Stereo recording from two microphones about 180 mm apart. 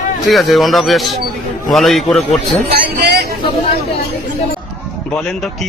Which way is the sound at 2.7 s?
60° right (ahead or behind).